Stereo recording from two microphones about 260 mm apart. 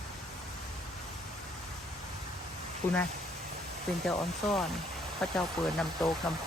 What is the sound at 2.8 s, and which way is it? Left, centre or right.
Speech, left.